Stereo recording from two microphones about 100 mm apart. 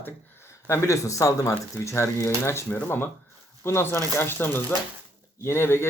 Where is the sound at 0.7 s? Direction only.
30° left (ahead or behind).